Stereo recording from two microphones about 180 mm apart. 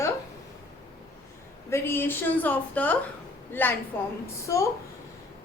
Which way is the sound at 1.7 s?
10° left (ahead or behind).